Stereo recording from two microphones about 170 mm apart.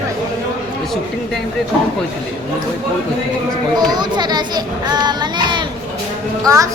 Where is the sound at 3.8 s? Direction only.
25° right (ahead or behind).